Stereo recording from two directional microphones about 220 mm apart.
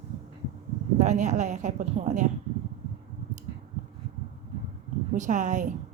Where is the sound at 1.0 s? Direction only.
30° right (ahead or behind).